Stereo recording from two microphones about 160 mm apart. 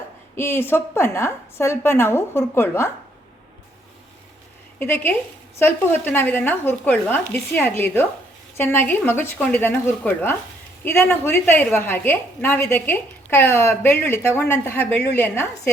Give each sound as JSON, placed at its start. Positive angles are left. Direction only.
{"t": 0.3, "sound": "a woman's voice", "side_deg": 15}
{"t": 4.8, "sound": "a woman's voice", "side_deg": 10}